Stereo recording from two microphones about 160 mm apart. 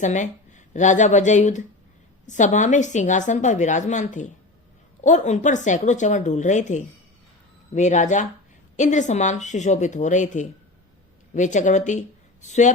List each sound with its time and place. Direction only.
0.0 s a woman's voice: 50° left (ahead or behind)